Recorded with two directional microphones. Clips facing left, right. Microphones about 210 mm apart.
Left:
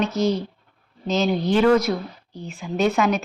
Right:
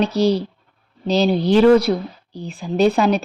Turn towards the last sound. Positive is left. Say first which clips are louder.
# right 4 dB
turn(degrees=-35)  # may be behind; listen again after turning